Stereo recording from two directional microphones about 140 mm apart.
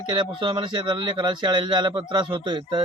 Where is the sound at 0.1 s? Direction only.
35° right (ahead or behind).